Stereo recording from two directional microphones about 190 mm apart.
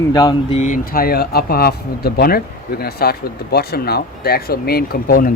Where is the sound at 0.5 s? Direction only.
40° left (ahead or behind).